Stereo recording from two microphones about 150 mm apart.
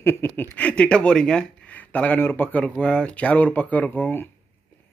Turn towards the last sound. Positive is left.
turn(degrees=10)  # may be behind; listen again after turning